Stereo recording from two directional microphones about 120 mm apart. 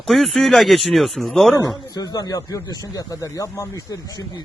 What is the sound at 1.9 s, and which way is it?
Speech, 30° left (ahead or behind).